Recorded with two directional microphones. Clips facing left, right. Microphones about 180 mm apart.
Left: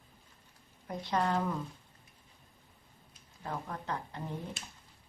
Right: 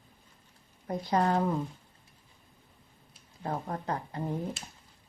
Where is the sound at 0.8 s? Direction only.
35° right (ahead or behind).